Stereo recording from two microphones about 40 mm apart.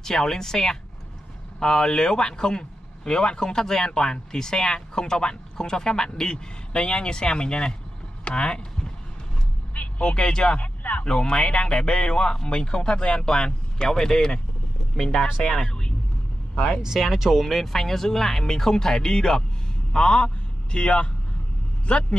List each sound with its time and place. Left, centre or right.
0.0 s speech: centre
9.8 s speech: left
10.6 s speech: left
11.1 s speech: left
17.0 s speech: centre; by 21.1 s left